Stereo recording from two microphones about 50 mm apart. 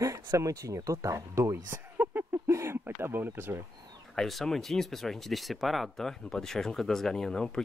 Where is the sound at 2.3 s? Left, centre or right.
Right.